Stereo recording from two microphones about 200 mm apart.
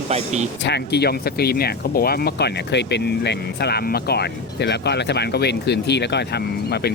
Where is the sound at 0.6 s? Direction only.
55° left (ahead or behind).